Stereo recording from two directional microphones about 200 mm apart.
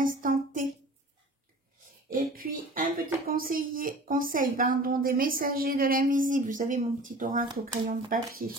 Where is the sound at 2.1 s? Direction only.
45° right (ahead or behind).